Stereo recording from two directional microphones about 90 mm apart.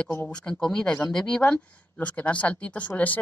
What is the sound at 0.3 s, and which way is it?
Speech, 10° left (ahead or behind).